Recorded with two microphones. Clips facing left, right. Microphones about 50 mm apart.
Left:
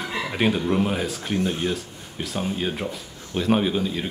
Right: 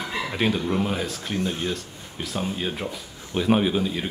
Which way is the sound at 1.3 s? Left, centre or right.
Centre.